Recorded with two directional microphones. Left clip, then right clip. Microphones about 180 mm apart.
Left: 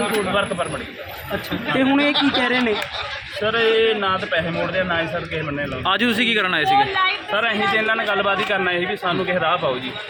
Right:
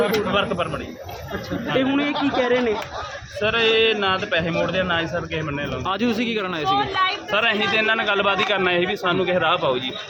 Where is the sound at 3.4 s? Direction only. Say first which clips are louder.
Left 1 dB; 25° right (ahead or behind).